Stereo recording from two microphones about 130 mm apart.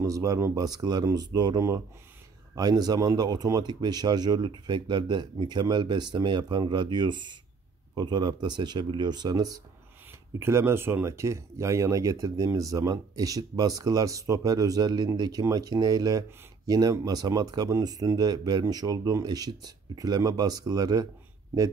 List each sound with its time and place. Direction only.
0.0 s speech: 25° right (ahead or behind)
10.4 s speech: 20° right (ahead or behind)